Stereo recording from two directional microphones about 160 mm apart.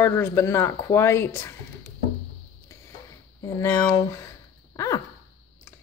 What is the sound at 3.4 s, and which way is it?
Speech, 20° left (ahead or behind).